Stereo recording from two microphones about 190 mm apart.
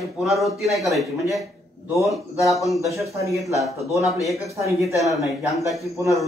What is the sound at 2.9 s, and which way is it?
Speech, 15° right (ahead or behind).